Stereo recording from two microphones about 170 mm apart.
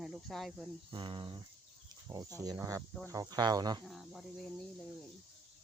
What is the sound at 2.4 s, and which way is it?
Speech, 20° right (ahead or behind).